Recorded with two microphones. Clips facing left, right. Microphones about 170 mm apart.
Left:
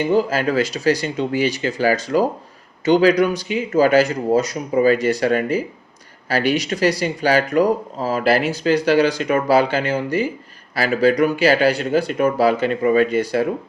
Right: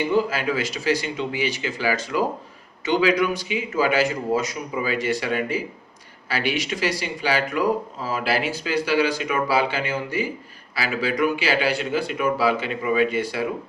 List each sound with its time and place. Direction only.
0.0 s a man's voice: 45° left (ahead or behind)